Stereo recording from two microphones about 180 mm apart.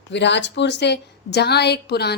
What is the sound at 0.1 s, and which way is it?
A woman's voice, 75° left (ahead or behind).